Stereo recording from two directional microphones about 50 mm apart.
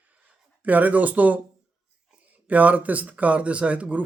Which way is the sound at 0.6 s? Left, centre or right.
Right.